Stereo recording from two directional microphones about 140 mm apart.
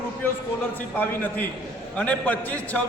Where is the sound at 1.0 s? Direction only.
15° left (ahead or behind).